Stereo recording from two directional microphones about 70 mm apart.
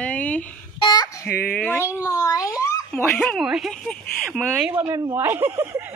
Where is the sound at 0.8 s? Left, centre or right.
Left.